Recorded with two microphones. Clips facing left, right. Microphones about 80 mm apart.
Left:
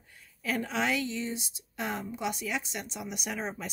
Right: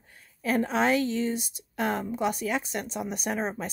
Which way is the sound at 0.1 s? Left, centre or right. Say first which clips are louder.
Right 6 dB; right.